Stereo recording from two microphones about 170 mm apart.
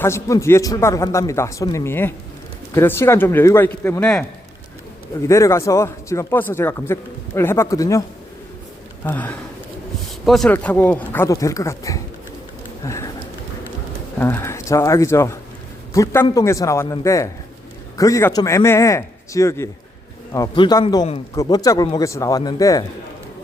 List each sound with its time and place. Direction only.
0.0 s speech: 15° left (ahead or behind)
5.2 s speech: 15° left (ahead or behind)
9.0 s a man's voice: 10° left (ahead or behind)
12.8 s a sound: 15° left (ahead or behind)
14.2 s a man's voice: 15° left (ahead or behind)